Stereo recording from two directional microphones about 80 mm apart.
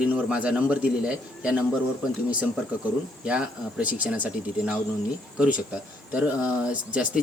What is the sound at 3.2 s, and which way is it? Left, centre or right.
Speech, centre.